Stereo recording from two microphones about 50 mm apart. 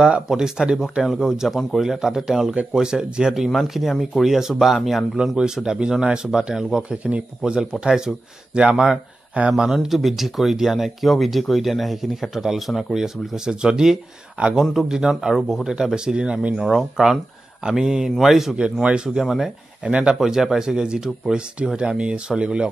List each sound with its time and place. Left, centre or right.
0.3 s speech: centre
9.8 s speech: centre
16.5 s speech: centre
18.6 s speech: right
19.0 s speech: centre
19.8 s speech: right
20.2 s speech: centre